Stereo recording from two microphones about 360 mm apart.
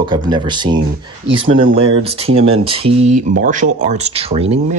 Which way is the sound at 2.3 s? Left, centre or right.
Right.